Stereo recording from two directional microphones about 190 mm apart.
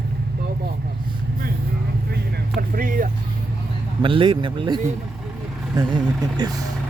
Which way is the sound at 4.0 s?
25° right (ahead or behind).